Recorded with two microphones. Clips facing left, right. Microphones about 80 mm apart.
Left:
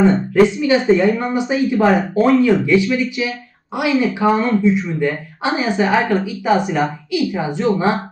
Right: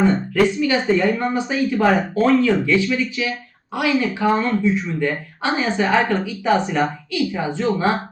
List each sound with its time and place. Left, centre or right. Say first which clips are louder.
0.4 s speech: left 2 dB; centre